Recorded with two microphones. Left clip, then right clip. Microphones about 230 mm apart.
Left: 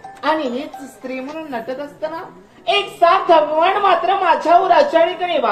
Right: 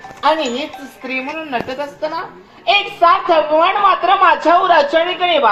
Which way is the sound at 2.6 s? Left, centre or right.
Right.